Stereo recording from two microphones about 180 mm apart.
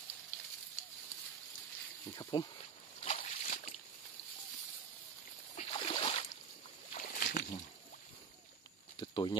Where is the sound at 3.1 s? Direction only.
40° left (ahead or behind).